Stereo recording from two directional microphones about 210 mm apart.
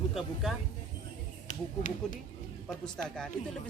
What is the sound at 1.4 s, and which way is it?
Speech, 40° left (ahead or behind).